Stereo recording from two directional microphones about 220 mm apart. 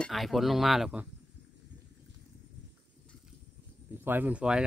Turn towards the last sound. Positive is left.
turn(degrees=-5)  # may be behind; listen again after turning